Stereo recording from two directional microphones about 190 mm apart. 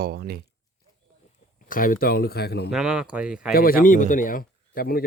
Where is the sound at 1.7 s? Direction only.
45° left (ahead or behind).